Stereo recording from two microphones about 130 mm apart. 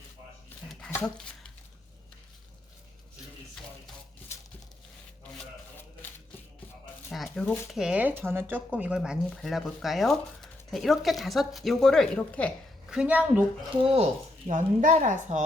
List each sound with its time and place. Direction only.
7.1 s speech: 5° left (ahead or behind)
12.9 s a woman's voice: 10° right (ahead or behind)
13.8 s speech: 50° right (ahead or behind)
14.5 s a woman's voice: 75° right (ahead or behind)